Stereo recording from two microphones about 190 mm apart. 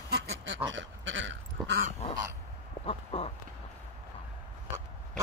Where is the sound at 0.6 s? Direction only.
80° right.